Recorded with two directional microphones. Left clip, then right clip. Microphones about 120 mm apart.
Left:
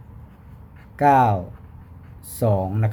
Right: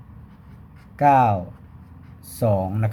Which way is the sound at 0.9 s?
10° left (ahead or behind).